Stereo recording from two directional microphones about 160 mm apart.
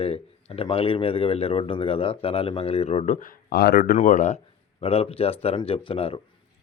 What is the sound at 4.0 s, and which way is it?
Speech, 50° left (ahead or behind).